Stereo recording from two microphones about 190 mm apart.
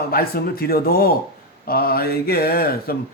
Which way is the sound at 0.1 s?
50° left (ahead or behind).